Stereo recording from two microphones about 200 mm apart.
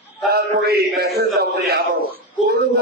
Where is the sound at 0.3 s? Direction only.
50° right (ahead or behind).